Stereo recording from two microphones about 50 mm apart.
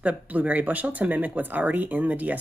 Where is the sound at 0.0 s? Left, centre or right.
Right.